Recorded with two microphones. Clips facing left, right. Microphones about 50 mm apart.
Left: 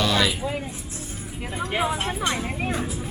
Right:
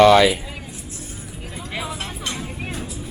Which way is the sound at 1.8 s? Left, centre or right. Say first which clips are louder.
Left 5 dB; left.